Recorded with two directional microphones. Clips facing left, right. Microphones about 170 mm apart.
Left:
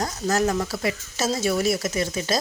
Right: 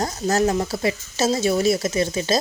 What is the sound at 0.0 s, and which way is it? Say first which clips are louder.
Speech: right 3 dB; 30° right (ahead or behind).